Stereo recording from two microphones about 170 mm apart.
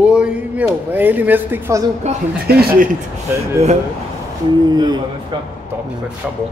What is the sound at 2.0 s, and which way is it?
Speech, 40° right (ahead or behind).